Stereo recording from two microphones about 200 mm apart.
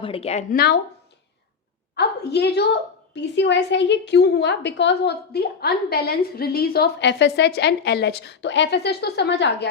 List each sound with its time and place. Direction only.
0.0 s speech: 30° left (ahead or behind)
0.5 s speech: 50° left (ahead or behind)
2.0 s a woman's voice: 55° left (ahead or behind)